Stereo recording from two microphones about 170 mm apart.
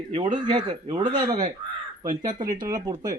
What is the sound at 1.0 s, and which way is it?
Speech, 25° right (ahead or behind).